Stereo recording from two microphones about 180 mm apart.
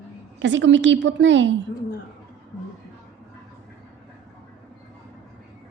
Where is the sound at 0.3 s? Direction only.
85° right.